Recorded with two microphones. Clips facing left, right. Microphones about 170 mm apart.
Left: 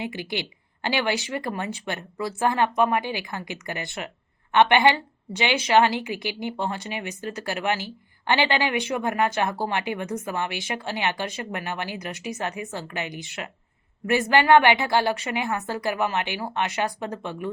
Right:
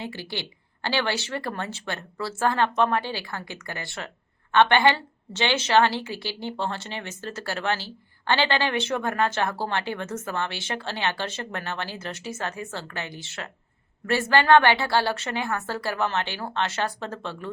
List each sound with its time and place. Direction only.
0.0 s a woman's voice: 15° left (ahead or behind)